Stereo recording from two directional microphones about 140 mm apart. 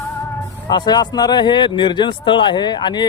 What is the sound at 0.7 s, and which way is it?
Speech, 30° left (ahead or behind).